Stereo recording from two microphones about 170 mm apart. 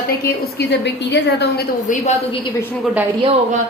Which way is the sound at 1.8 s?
40° left (ahead or behind).